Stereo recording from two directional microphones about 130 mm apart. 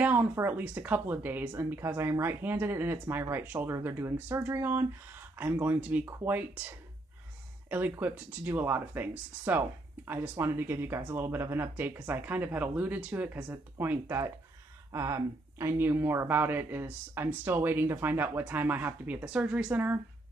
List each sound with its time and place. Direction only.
0.0 s speech: 15° right (ahead or behind)
7.7 s speech: 15° right (ahead or behind)